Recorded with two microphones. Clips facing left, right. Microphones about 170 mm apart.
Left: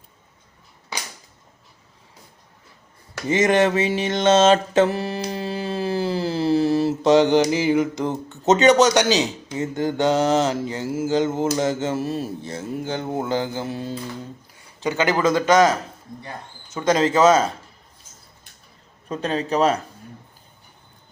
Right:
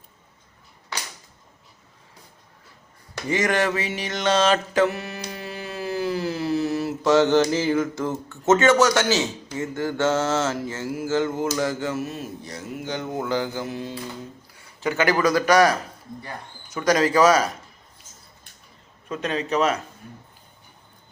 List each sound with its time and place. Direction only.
3.2 s mantra: 20° left (ahead or behind)
14.5 s a man's voice: 20° left (ahead or behind)
19.0 s a man's voice: 35° left (ahead or behind)